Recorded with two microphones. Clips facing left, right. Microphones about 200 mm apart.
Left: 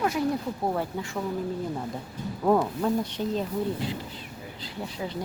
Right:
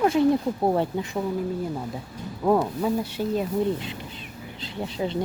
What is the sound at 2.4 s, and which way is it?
Speech, 5° right (ahead or behind).